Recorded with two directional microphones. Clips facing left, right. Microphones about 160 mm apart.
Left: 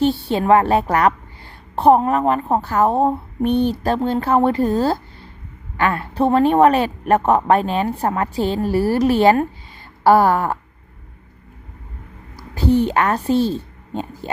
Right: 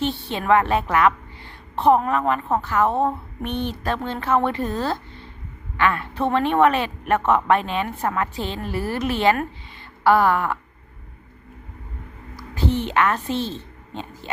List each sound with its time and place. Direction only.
0.0 s a woman's voice: 40° left (ahead or behind)
12.5 s a woman's voice: 40° left (ahead or behind)